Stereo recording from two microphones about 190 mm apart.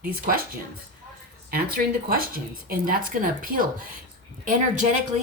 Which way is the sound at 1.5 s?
50° right (ahead or behind).